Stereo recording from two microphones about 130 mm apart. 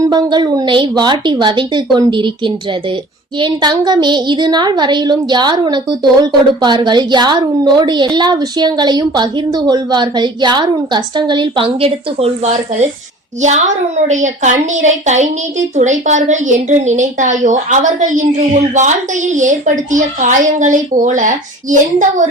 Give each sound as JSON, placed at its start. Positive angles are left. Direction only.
{"t": 0.0, "sound": "a woman's voice", "side_deg": -35}
{"t": 13.4, "sound": "a woman's voice", "side_deg": -65}